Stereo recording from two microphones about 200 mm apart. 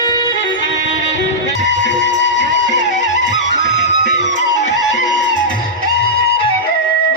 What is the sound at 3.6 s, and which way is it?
Music, 35° left (ahead or behind).